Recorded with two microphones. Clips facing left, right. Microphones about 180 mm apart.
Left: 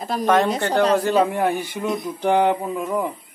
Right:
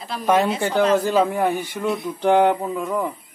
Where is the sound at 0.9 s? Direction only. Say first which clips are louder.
Even; centre (ahead or behind).